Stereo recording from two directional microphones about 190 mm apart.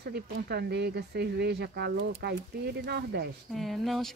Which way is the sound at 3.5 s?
Centre (ahead or behind).